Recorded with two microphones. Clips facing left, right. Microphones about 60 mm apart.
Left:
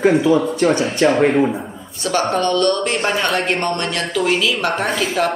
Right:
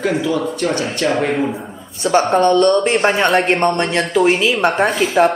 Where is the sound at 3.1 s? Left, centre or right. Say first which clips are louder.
Right 4 dB; right.